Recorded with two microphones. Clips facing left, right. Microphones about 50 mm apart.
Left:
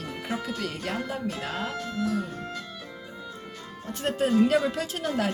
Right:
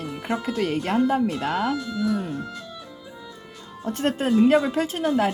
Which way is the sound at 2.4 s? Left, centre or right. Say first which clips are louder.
Right 2 dB; left.